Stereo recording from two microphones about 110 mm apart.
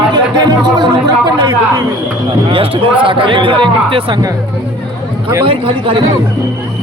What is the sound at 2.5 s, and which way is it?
A man's voice, 55° right (ahead or behind).